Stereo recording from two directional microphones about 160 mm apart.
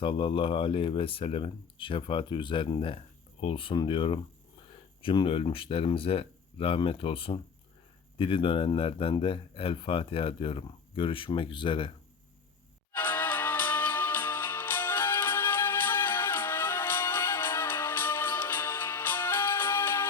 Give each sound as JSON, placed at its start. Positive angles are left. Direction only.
{"t": 0.0, "sound": "speech", "side_deg": 35}
{"t": 12.9, "sound": "music", "side_deg": 10}